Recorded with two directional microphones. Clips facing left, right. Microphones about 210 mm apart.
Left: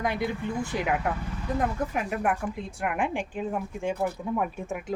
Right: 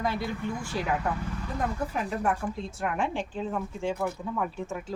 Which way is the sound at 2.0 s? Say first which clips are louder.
Left 1 dB; 15° left (ahead or behind).